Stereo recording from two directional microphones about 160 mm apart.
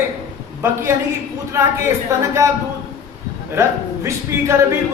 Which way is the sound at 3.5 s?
15° right (ahead or behind).